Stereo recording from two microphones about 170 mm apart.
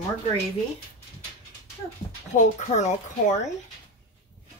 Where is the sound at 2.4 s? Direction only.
45° left (ahead or behind).